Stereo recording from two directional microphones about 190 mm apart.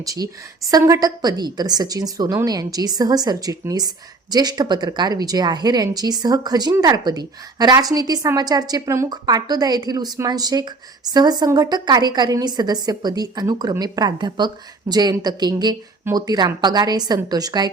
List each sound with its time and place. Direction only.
0.0 s a woman's voice: 20° right (ahead or behind)